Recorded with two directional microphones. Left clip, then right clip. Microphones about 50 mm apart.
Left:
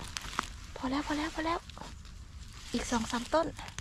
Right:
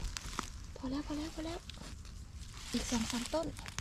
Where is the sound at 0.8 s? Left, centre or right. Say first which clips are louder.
Left 7 dB; right.